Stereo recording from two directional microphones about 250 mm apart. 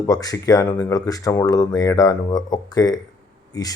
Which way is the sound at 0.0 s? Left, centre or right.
Centre.